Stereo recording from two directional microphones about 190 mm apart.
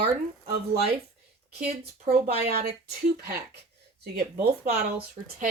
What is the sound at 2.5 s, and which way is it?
Speech, 55° right (ahead or behind).